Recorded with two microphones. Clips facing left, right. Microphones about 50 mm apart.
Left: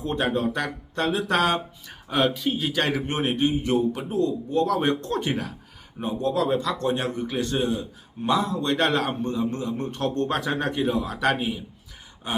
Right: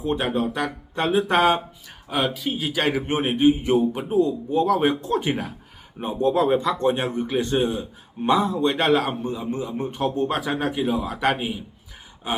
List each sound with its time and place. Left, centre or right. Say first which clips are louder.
0.0 s speech: right 1 dB; centre
0.9 s speech: right 3 dB; centre
1.9 s speech: left 1 dB; centre
6.0 s speech: right 4 dB; right